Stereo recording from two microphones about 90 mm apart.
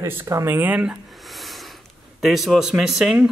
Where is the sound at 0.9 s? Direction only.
Centre (ahead or behind).